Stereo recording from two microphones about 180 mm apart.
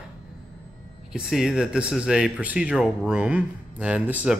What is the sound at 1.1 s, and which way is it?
Speech, 5° right (ahead or behind).